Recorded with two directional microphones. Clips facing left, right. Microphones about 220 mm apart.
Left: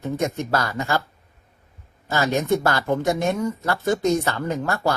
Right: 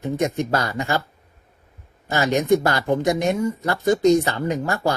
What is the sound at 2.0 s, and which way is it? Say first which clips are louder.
Speech: right 2 dB; 20° right (ahead or behind).